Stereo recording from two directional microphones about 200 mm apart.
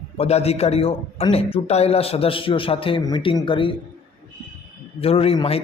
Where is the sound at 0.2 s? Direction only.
30° left (ahead or behind).